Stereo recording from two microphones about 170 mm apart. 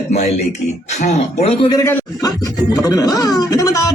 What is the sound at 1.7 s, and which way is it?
Speech, 15° left (ahead or behind).